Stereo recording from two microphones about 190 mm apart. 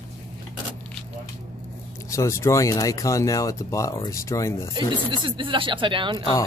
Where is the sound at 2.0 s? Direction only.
15° left (ahead or behind).